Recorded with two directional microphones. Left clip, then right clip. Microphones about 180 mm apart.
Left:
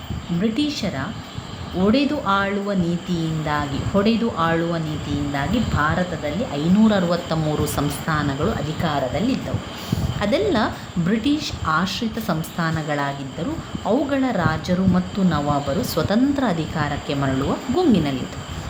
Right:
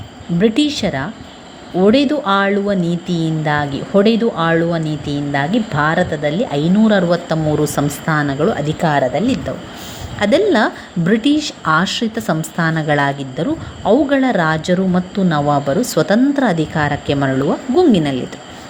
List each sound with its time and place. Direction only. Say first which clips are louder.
0.3 s a woman's voice: right 8 dB; 35° right (ahead or behind)